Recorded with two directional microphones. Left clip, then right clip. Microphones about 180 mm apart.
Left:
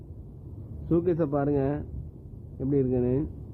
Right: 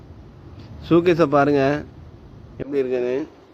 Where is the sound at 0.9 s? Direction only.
25° right (ahead or behind).